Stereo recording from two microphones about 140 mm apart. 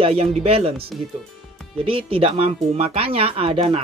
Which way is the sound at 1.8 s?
40° right (ahead or behind).